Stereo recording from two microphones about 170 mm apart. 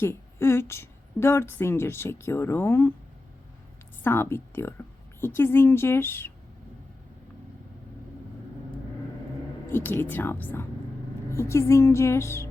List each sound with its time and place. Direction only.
0.0 s a woman's voice: 15° left (ahead or behind)
4.0 s a woman's voice: 15° left (ahead or behind)
9.6 s a woman's voice: 15° left (ahead or behind)